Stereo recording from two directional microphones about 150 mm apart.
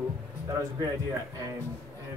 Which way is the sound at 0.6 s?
20° right (ahead or behind).